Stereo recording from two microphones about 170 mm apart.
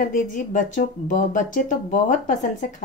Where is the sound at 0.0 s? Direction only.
50° left (ahead or behind).